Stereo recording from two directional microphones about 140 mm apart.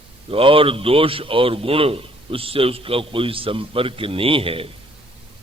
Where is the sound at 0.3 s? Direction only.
40° right (ahead or behind).